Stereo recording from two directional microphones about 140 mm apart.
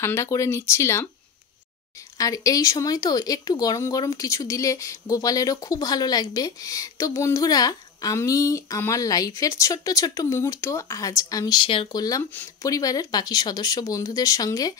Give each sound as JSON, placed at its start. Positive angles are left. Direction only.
{"t": 0.0, "sound": "speech", "side_deg": 20}
{"t": 2.1, "sound": "speech", "side_deg": 25}
{"t": 12.0, "sound": "speech", "side_deg": 25}